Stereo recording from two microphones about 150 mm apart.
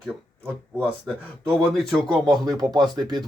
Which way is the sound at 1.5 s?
Centre (ahead or behind).